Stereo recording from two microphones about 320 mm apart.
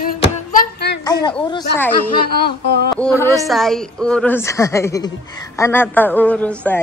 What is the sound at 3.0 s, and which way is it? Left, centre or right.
A woman's voice, centre.